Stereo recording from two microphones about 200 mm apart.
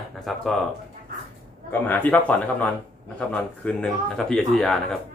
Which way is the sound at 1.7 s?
10° left (ahead or behind).